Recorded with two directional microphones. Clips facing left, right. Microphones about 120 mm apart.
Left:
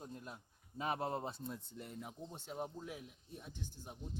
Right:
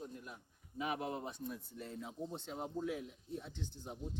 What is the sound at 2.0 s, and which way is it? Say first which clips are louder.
Speech: right 5 dB; 10° left (ahead or behind).